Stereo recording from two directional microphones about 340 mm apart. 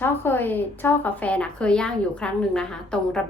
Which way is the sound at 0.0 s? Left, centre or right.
Centre.